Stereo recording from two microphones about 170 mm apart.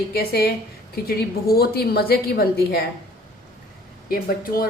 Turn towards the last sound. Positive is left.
turn(degrees=60)  # may be behind; listen again after turning